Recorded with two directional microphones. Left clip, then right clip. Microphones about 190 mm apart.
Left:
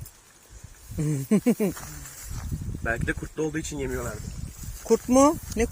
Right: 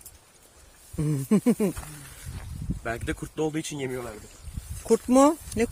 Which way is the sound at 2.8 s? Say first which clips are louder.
Left 3 dB; 35° right (ahead or behind).